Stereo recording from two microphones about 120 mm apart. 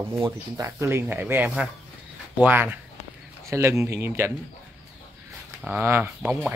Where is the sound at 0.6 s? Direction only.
25° right (ahead or behind).